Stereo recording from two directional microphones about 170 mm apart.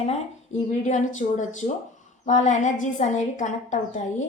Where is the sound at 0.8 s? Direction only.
45° left (ahead or behind).